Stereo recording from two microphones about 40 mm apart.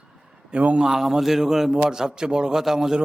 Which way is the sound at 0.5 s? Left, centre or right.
Right.